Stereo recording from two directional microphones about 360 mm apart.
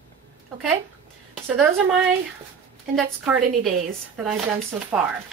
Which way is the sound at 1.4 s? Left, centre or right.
Centre.